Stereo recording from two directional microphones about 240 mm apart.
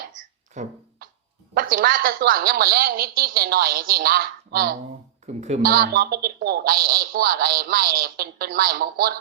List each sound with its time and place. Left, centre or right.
0.5 s music: right
1.7 s speech: right
5.2 s speech: right
5.7 s speech: right